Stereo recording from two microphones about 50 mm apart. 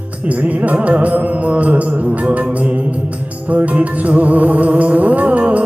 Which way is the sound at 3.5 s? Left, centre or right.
Right.